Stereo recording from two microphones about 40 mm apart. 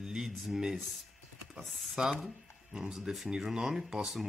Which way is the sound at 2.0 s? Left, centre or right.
Centre.